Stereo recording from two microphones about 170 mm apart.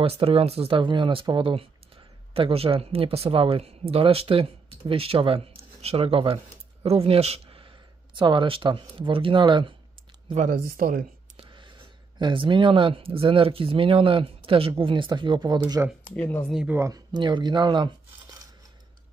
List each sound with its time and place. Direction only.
0.0 s speech: 35° right (ahead or behind)
10.2 s speech: 50° right (ahead or behind)
11.3 s whispering: 30° right (ahead or behind)
12.2 s speech: 30° right (ahead or behind)
16.0 s speech: 10° left (ahead or behind)
16.5 s speech: 10° right (ahead or behind); by 17.9 s 25° right (ahead or behind)